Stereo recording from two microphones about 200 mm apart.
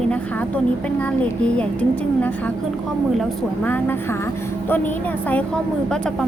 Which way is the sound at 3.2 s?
10° left (ahead or behind).